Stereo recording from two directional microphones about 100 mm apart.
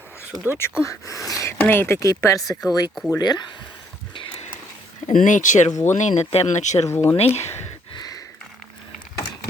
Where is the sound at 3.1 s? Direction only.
45° left (ahead or behind).